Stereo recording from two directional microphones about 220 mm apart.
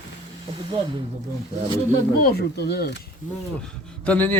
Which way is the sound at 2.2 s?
45° left (ahead or behind).